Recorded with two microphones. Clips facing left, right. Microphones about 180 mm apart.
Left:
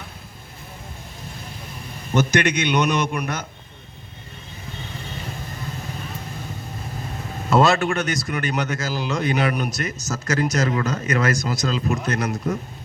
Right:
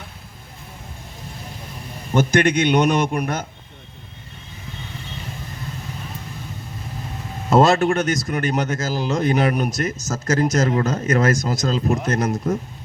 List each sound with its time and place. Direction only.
2.4 s speech: 45° right (ahead or behind)
7.6 s speech: 40° right (ahead or behind)